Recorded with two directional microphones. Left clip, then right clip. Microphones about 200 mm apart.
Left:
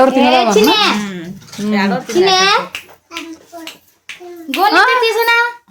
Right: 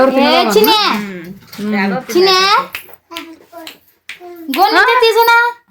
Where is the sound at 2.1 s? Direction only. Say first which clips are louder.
Right 1 dB; 60° right (ahead or behind).